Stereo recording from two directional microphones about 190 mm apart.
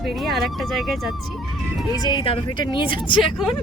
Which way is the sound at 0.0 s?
Centre (ahead or behind).